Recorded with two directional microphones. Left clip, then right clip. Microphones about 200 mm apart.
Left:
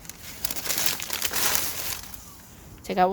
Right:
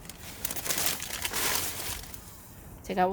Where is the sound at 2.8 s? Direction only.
25° left (ahead or behind).